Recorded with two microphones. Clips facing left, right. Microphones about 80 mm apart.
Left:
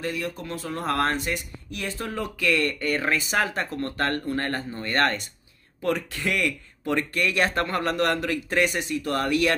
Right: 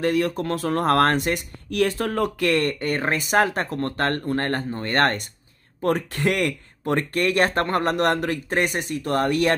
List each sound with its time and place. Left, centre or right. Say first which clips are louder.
0.0 s speech: right 8 dB; right